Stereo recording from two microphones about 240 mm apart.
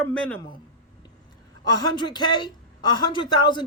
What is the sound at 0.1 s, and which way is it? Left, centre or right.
Speech, centre.